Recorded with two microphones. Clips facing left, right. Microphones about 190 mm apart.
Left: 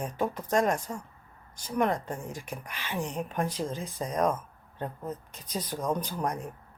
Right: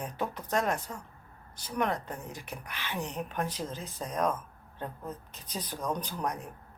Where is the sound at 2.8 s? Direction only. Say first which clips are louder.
Left 3 dB; 5° left (ahead or behind).